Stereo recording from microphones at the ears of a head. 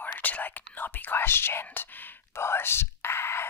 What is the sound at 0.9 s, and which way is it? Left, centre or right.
Speech, left.